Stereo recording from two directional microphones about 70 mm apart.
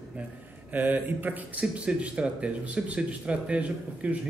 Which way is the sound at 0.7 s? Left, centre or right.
Right.